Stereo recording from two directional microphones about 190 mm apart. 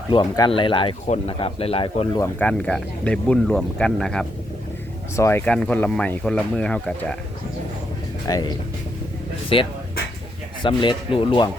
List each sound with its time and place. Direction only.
0.1 s speech: 25° left (ahead or behind)
2.2 s speech: 5° left (ahead or behind)
5.1 s speech: 15° left (ahead or behind)
8.3 s speech: 20° left (ahead or behind)